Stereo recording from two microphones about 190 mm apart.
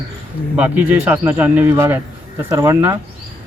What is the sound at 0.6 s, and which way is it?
Speech, 10° right (ahead or behind).